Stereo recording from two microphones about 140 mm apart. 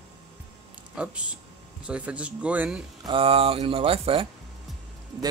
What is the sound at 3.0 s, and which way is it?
Speech, 40° right (ahead or behind).